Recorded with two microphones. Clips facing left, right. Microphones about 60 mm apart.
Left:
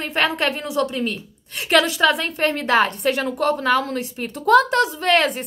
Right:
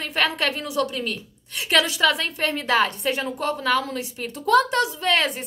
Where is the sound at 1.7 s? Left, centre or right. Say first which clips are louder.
Left 3 dB; left.